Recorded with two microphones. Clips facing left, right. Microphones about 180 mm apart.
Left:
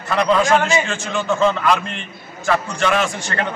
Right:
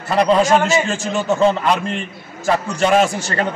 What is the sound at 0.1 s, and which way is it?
A man's voice, 35° right (ahead or behind).